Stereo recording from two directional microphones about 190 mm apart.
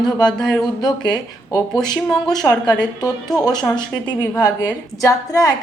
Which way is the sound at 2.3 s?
Centre (ahead or behind).